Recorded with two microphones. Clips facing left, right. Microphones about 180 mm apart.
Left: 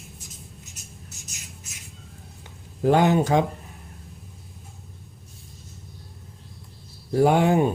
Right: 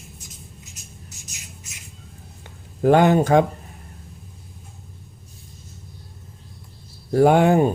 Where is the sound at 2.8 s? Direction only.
55° right (ahead or behind).